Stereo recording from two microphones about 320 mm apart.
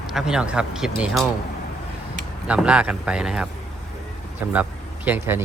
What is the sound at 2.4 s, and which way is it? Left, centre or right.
Speech, centre.